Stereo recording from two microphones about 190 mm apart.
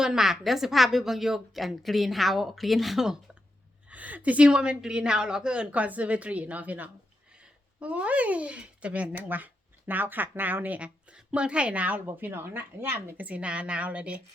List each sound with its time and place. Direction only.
0.0 s a woman's voice: 5° right (ahead or behind)